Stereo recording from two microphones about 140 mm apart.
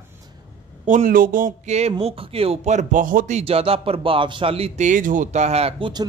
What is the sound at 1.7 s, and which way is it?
A man's voice, 50° right (ahead or behind).